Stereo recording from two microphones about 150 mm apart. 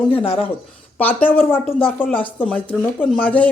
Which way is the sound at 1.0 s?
10° left (ahead or behind).